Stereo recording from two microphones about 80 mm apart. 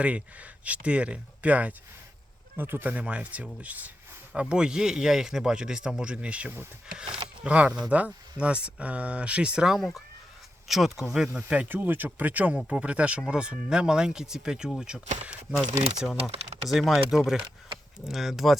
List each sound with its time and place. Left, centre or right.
0.0 s speech: centre
11.3 s speech: centre